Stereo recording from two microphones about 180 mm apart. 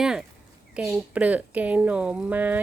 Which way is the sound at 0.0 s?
5° right (ahead or behind).